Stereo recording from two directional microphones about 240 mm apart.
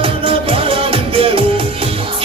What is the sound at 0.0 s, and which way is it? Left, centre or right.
Music, right.